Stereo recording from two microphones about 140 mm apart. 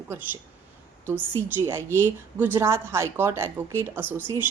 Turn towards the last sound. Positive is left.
turn(degrees=-15)  # may be behind; listen again after turning